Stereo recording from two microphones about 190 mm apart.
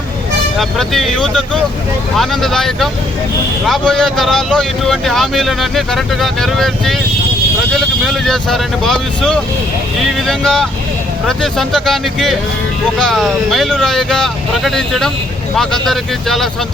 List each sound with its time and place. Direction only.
0.6 s speech: centre (ahead or behind)